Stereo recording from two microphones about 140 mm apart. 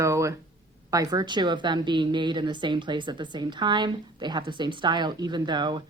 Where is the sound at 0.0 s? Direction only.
20° right (ahead or behind).